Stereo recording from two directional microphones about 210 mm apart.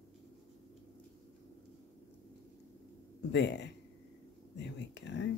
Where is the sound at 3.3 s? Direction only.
55° left (ahead or behind).